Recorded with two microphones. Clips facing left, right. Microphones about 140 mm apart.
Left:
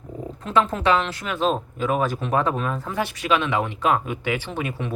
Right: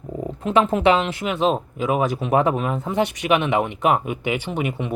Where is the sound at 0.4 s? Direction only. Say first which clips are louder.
Right 4 dB; 15° right (ahead or behind).